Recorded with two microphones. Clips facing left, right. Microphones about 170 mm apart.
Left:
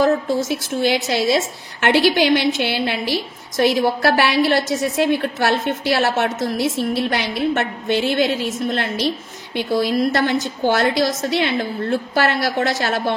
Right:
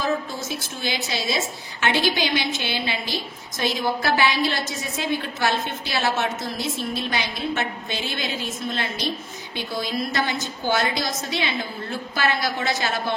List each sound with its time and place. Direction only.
0.0 s a woman's voice: 70° left (ahead or behind)